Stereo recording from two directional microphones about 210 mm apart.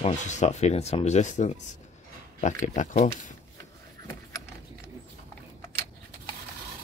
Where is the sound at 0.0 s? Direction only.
35° left (ahead or behind).